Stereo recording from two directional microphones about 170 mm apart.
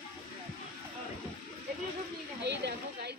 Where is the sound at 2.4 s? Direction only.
80° right.